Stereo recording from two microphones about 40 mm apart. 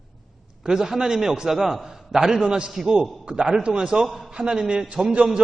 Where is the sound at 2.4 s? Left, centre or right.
Right.